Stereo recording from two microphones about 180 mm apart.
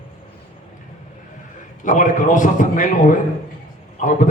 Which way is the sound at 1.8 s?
45° left (ahead or behind).